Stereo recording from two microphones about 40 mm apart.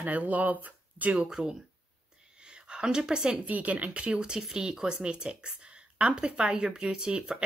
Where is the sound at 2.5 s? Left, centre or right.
Right.